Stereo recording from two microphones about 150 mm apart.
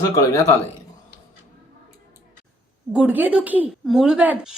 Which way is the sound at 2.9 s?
10° right (ahead or behind).